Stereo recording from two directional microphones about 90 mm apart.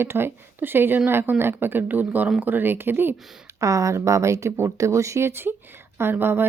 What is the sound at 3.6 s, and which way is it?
Speech, 40° right (ahead or behind).